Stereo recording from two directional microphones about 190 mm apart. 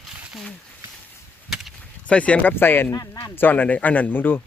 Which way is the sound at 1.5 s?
5° left (ahead or behind).